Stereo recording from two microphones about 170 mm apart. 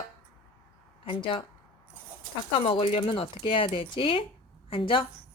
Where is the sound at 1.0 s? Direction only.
30° left (ahead or behind).